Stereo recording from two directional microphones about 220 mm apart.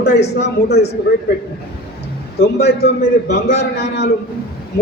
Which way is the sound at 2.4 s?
50° left (ahead or behind).